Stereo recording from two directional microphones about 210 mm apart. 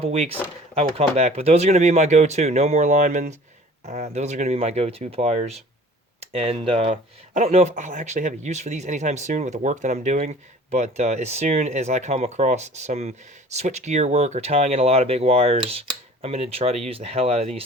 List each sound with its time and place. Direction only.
0.0 s speech: 30° right (ahead or behind)